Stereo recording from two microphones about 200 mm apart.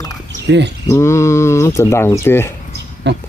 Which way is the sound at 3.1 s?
60° right (ahead or behind).